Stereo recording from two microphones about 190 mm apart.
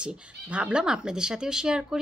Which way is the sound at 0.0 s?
5° right (ahead or behind).